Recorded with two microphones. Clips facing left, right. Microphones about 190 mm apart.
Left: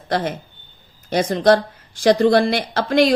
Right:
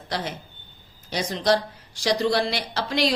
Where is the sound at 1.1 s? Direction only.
50° left (ahead or behind).